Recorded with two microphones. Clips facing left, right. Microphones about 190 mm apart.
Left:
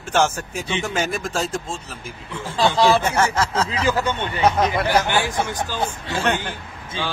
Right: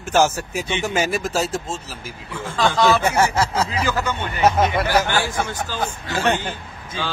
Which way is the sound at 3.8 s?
30° left (ahead or behind).